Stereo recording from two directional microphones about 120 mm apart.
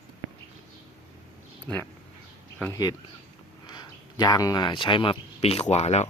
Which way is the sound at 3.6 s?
35° left (ahead or behind).